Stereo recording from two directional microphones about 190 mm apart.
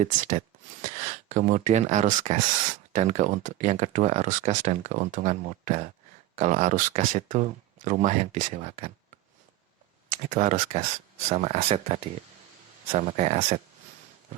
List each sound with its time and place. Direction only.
0.0 s speech: 45° right (ahead or behind)
10.1 s speech: 45° right (ahead or behind)